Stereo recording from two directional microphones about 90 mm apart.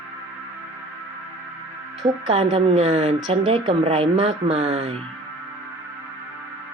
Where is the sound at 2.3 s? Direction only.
90° right.